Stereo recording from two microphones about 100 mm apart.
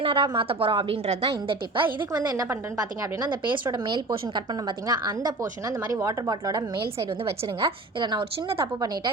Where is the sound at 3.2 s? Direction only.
50° right (ahead or behind).